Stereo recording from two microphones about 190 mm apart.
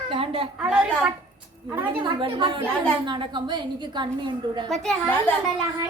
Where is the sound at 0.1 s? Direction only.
30° right (ahead or behind).